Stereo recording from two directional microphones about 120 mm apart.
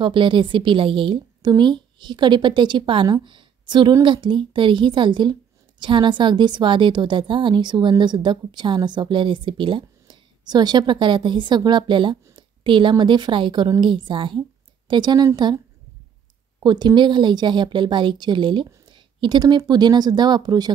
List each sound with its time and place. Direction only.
0.0 s a woman's voice: 45° right (ahead or behind)